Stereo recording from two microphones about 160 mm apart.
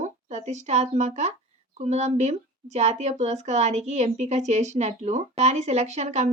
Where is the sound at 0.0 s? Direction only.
45° right (ahead or behind).